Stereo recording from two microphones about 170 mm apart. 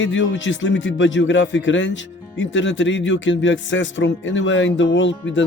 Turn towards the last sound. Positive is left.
turn(degrees=90)